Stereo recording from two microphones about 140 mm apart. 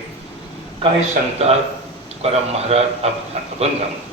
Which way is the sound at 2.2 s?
45° right (ahead or behind).